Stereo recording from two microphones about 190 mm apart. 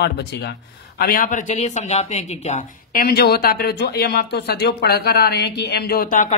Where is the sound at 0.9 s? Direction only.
50° left (ahead or behind).